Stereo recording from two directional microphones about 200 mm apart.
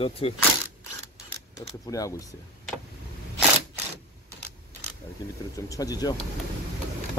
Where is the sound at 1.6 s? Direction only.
15° left (ahead or behind).